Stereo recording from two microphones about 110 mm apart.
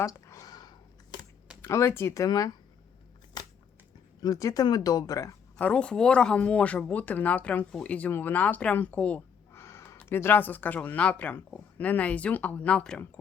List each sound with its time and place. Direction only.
0.0 s a sound: 30° left (ahead or behind)
1.6 s speech: 25° left (ahead or behind)
4.2 s speech: 30° left (ahead or behind)
5.5 s speech: 10° left (ahead or behind)
9.5 s a sound: 25° left (ahead or behind)
10.0 s speech: 20° left (ahead or behind)